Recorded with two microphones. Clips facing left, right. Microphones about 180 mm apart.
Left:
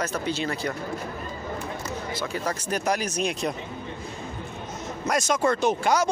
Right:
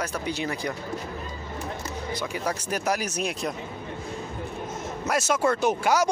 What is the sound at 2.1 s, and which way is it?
Speech, 15° right (ahead or behind).